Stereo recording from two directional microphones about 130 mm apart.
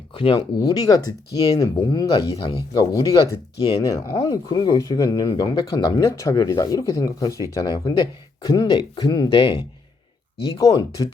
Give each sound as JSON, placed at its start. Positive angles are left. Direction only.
{"t": 0.1, "sound": "speech", "side_deg": 40}
{"t": 2.0, "sound": "speech", "side_deg": 45}
{"t": 2.7, "sound": "speech", "side_deg": 25}
{"t": 11.0, "sound": "speech", "side_deg": 30}